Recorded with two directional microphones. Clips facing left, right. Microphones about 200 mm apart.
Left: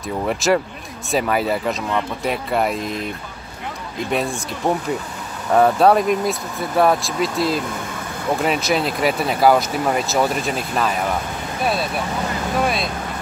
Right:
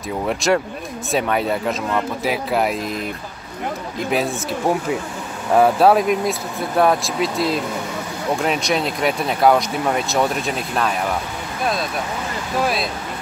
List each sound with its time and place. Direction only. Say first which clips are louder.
0.3 s speech: even; centre (ahead or behind)
4.1 s speech: right 2 dB; 5° right (ahead or behind)
12.6 s speech: even; centre (ahead or behind)